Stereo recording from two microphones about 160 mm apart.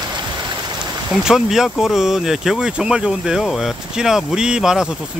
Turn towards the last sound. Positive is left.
turn(degrees=-5)  # may be behind; listen again after turning